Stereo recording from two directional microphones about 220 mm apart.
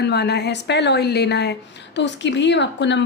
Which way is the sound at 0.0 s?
50° left (ahead or behind).